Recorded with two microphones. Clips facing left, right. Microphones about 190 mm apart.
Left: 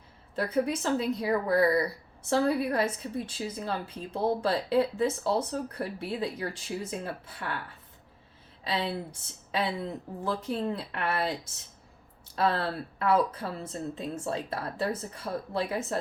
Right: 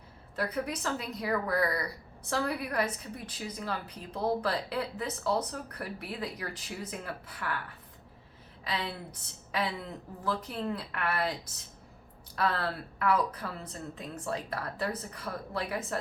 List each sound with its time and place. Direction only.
0.3 s a woman's voice: 25° left (ahead or behind)
8.6 s a woman's voice: 25° left (ahead or behind)
12.4 s a woman's voice: 25° left (ahead or behind)